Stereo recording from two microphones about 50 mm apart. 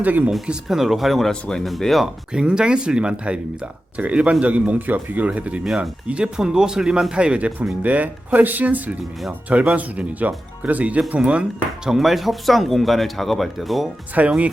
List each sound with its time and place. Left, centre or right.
0.0 s speech: right
0.4 s speech: centre
1.3 s speech: centre
2.3 s speech: centre
5.6 s speech: centre
6.1 s speech: right
11.9 s speech: centre
14.2 s speech: right